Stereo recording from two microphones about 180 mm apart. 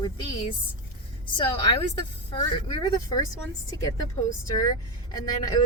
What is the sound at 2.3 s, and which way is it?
A woman's voice, 25° left (ahead or behind).